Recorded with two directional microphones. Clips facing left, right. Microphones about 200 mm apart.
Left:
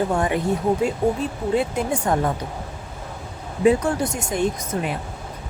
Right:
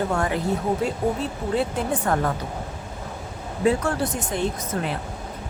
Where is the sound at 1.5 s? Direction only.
15° left (ahead or behind).